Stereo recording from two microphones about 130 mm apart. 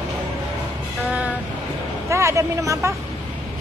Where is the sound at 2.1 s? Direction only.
20° right (ahead or behind).